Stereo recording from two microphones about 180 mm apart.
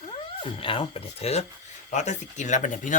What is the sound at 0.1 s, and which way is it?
Speech, 30° left (ahead or behind).